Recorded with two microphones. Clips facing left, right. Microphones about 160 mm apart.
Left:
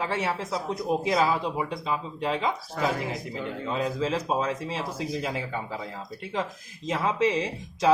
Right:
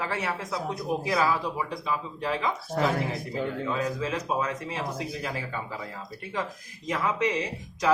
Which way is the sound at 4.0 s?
30° left (ahead or behind).